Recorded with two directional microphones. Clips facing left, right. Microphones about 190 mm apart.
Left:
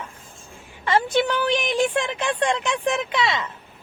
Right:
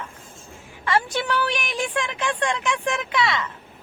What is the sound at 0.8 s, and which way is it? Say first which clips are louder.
A woman's voice: left 3 dB; 25° left (ahead or behind).